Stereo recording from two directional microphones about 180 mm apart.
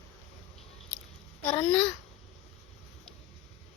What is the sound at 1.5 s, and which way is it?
Speech, 10° left (ahead or behind).